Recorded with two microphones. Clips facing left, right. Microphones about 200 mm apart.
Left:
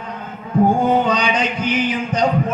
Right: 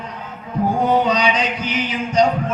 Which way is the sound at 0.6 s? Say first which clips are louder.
Left 6 dB; 50° left (ahead or behind).